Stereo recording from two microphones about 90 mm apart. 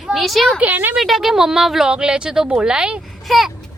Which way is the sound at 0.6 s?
20° right (ahead or behind).